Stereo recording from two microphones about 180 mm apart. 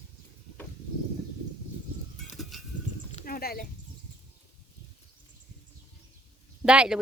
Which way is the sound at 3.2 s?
55° left (ahead or behind).